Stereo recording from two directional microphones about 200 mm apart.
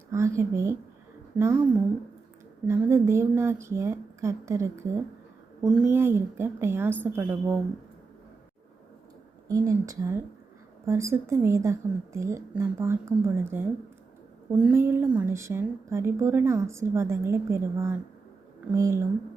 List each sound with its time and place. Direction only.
0.1 s a woman's voice: 15° right (ahead or behind)
2.6 s a woman's voice: 15° right (ahead or behind)
9.5 s a woman's voice: 15° right (ahead or behind)